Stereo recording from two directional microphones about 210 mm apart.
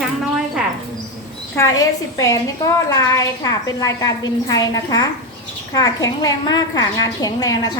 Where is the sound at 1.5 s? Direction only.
15° left (ahead or behind).